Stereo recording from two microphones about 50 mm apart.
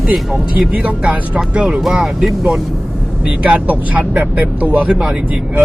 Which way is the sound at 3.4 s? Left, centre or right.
Right.